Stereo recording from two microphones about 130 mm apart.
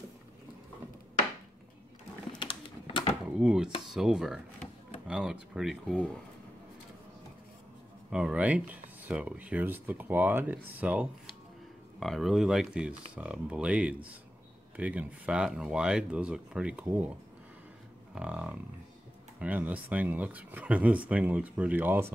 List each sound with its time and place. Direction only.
2.3 s a sound: 40° left (ahead or behind)
3.3 s speech: 5° right (ahead or behind)
8.1 s speech: 10° right (ahead or behind)
12.0 s speech: centre (ahead or behind)
18.1 s speech: 10° right (ahead or behind)